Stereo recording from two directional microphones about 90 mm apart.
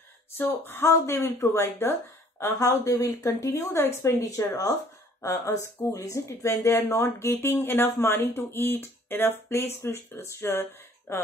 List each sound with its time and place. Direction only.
0.4 s speech: 25° left (ahead or behind)